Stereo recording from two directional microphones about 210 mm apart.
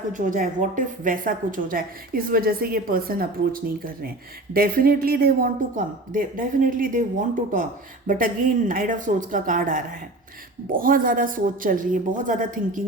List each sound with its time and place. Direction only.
0.1 s a woman's voice: 40° right (ahead or behind)